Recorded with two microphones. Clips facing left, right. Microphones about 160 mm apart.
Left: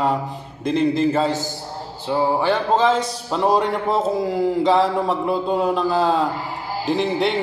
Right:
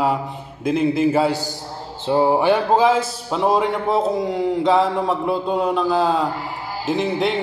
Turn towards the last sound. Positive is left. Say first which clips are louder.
# even
turn(degrees=0)  # may be behind; listen again after turning